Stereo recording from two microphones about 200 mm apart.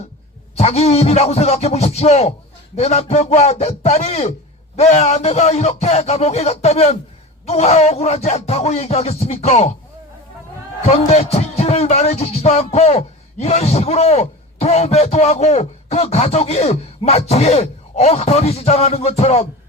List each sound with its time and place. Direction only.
0.5 s a man's voice: 30° left (ahead or behind)
10.8 s a man's voice: 35° left (ahead or behind)